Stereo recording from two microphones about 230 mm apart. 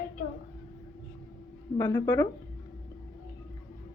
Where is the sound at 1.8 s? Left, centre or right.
Centre.